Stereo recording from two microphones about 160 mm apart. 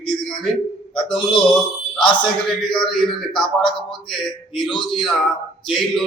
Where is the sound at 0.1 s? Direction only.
5° left (ahead or behind).